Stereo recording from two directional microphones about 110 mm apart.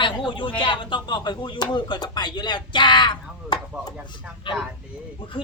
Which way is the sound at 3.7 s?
10° right (ahead or behind).